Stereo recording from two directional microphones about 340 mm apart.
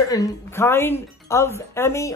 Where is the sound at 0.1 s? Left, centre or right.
Centre.